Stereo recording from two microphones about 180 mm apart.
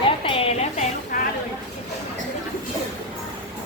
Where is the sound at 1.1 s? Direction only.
45° left (ahead or behind).